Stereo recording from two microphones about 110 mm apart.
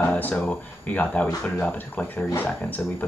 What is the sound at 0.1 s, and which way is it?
Speech, 15° left (ahead or behind).